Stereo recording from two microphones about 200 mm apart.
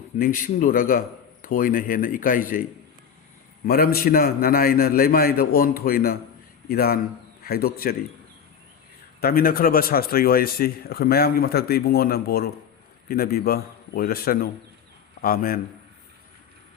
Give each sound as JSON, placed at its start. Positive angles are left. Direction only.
{"t": 0.2, "sound": "speech", "side_deg": 45}
{"t": 3.7, "sound": "speech", "side_deg": 50}
{"t": 9.2, "sound": "speech", "side_deg": 45}